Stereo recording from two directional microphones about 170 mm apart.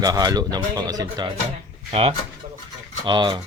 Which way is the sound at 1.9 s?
35° right (ahead or behind).